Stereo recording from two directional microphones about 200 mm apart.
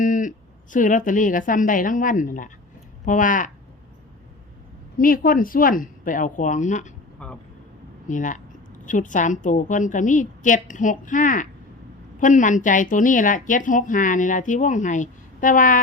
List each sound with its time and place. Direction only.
0.0 s speech: 40° left (ahead or behind)
4.9 s speech: 45° left (ahead or behind)
7.2 s speech: 5° left (ahead or behind)
8.0 s speech: 40° left (ahead or behind)